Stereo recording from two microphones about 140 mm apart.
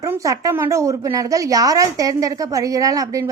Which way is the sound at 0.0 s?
25° right (ahead or behind).